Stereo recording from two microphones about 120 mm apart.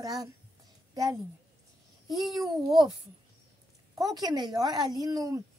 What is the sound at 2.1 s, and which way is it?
Babbling, centre (ahead or behind).